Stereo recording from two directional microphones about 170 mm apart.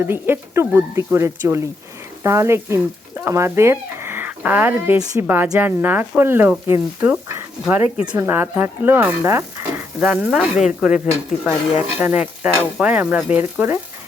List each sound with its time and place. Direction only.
0.0 s stir: 15° right (ahead or behind)
2.2 s speech: 15° right (ahead or behind)
5.5 s stir: 10° right (ahead or behind)
10.2 s speech: centre (ahead or behind)
10.8 s stir: 5° right (ahead or behind)